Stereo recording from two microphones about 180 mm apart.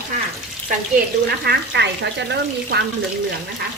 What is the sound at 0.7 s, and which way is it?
Speech, 55° right (ahead or behind).